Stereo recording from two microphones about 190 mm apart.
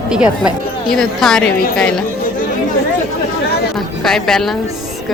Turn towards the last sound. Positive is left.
turn(degrees=0)  # may be behind; listen again after turning